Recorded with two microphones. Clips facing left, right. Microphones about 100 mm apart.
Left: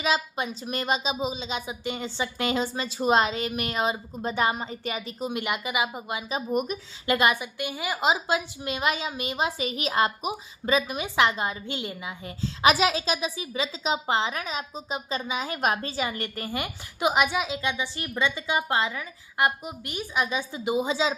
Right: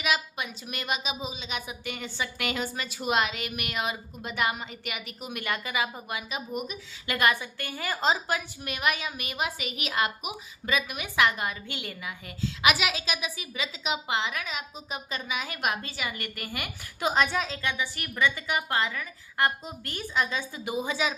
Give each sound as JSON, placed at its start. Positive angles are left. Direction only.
{"t": 0.0, "sound": "a woman's voice", "side_deg": 30}
{"t": 6.5, "sound": "speech", "side_deg": 50}
{"t": 7.1, "sound": "a woman's voice", "side_deg": 20}